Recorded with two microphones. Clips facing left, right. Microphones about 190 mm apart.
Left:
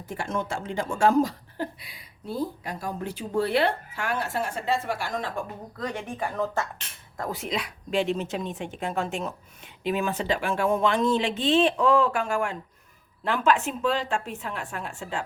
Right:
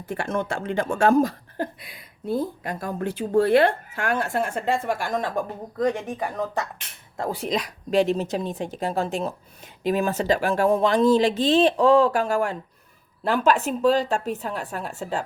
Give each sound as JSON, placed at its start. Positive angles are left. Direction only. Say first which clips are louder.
{"t": 0.0, "sound": "speech", "louder": "right 4 dB", "side_deg": -55}
{"t": 6.1, "sound": "speech", "louder": "right 1 dB", "side_deg": -15}
{"t": 7.2, "sound": "speech", "louder": "right 4 dB", "side_deg": -30}